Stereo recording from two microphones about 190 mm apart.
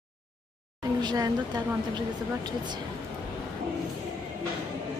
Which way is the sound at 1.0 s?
20° right (ahead or behind).